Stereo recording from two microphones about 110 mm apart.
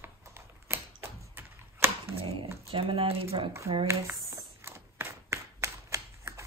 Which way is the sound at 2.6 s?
55° right (ahead or behind).